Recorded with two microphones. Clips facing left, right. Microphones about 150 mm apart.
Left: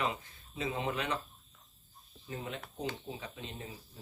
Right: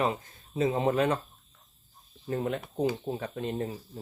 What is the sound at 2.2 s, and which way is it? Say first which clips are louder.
Speech: right 11 dB; 55° right (ahead or behind).